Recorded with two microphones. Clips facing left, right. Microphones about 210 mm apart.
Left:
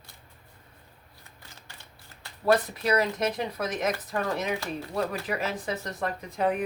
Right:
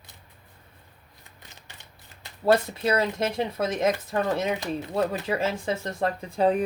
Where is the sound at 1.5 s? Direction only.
20° right (ahead or behind).